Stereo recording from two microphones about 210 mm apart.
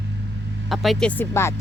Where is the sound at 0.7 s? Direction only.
Centre (ahead or behind).